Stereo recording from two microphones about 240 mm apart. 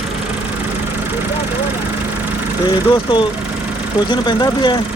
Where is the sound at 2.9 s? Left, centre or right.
Centre.